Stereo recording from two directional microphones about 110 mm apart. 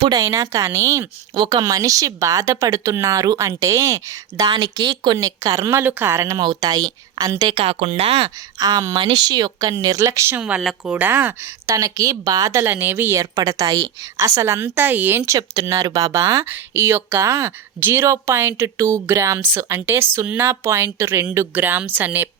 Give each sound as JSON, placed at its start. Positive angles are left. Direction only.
{"t": 0.1, "sound": "speech", "side_deg": -30}
{"t": 4.4, "sound": "speech", "side_deg": -40}
{"t": 7.5, "sound": "speech", "side_deg": -65}
{"t": 8.5, "sound": "speech", "side_deg": -35}
{"t": 10.6, "sound": "speech", "side_deg": 0}
{"t": 10.9, "sound": "speech", "side_deg": -15}
{"t": 13.3, "sound": "speech", "side_deg": -30}
{"t": 15.3, "sound": "speech", "side_deg": -30}